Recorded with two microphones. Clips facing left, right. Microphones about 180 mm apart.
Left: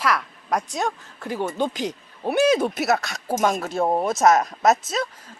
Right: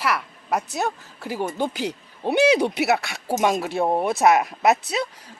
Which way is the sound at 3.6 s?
Centre (ahead or behind).